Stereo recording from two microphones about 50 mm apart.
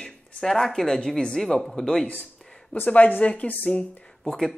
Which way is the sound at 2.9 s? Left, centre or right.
Left.